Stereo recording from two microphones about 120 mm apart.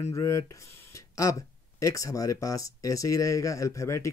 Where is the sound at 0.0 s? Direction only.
30° left (ahead or behind).